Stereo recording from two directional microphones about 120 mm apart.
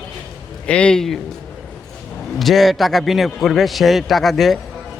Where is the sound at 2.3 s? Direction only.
Centre (ahead or behind).